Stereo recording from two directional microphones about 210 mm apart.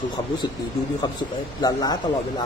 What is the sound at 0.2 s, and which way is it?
Speech, 20° left (ahead or behind).